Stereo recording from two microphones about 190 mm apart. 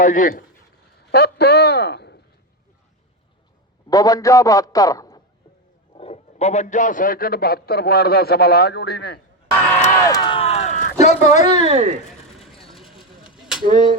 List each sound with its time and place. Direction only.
0.0 s a man's voice: 45° left (ahead or behind)
1.1 s a man's voice: 55° left (ahead or behind)
3.8 s a man's voice: 20° left (ahead or behind)
5.9 s a man's voice: 30° left (ahead or behind); by 9.2 s 55° left (ahead or behind)
9.9 s a sound: 20° left (ahead or behind); by 10.8 s 35° left (ahead or behind)
11.0 s speech: 40° left (ahead or behind)
11.6 s speech: 35° right (ahead or behind)
12.4 s vehicle: centre (ahead or behind)
13.3 s a sound: centre (ahead or behind)